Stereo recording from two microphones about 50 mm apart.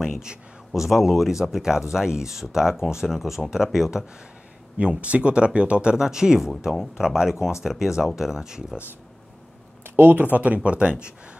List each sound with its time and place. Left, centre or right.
0.0 s speech: centre
4.7 s speech: right
5.9 s speech: centre
9.8 s speech: right
10.6 s speech: right